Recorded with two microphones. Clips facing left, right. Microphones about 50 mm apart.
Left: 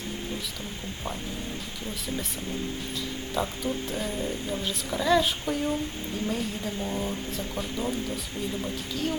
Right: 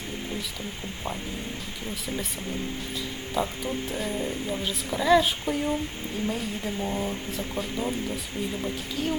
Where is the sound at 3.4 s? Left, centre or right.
Centre.